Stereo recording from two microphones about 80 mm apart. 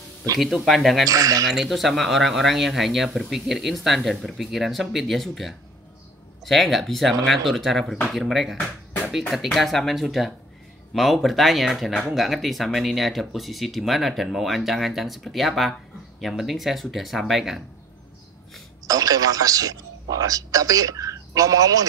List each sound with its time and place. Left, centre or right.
0.7 s speech: centre
1.0 s a man's voice: right
1.5 s speech: centre
18.9 s a man's voice: right